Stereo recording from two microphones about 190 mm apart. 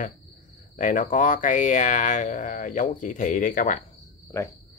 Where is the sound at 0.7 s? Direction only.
45° left (ahead or behind).